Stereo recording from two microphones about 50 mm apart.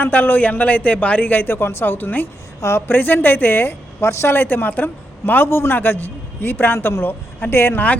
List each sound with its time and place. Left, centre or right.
0.0 s a man's voice: left
2.6 s a man's voice: left
4.4 s a man's voice: left